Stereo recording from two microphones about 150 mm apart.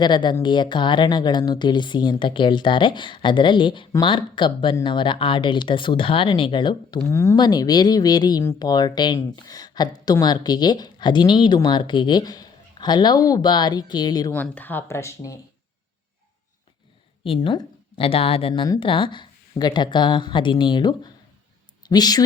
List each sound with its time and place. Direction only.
0.0 s speech: 30° left (ahead or behind)
7.1 s a woman's voice: 15° left (ahead or behind)
14.3 s speech: 10° left (ahead or behind)
17.2 s speech: 35° left (ahead or behind)